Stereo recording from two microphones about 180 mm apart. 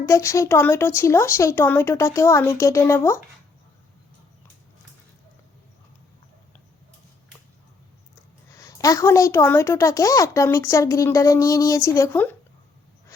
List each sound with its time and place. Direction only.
0.0 s a woman's voice: 15° left (ahead or behind)
8.5 s a woman's voice: 20° left (ahead or behind)